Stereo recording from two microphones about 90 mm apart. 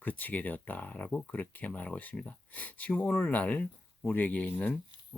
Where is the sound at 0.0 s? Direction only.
20° left (ahead or behind).